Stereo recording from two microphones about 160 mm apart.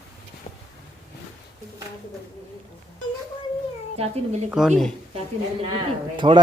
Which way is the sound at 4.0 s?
45° right (ahead or behind).